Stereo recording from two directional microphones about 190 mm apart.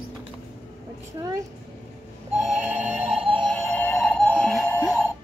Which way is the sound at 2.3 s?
5° right (ahead or behind).